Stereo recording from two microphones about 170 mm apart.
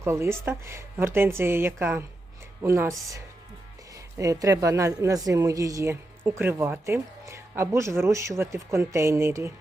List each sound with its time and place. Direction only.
0.0 s speech: 15° right (ahead or behind)
3.9 s speech: 20° right (ahead or behind)